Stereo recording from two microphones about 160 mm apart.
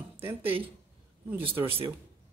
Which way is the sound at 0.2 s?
15° right (ahead or behind).